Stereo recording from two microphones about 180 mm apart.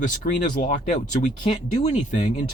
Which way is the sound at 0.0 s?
45° left (ahead or behind).